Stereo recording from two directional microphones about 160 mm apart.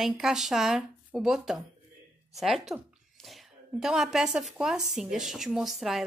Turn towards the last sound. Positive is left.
turn(degrees=0)  # may be behind; listen again after turning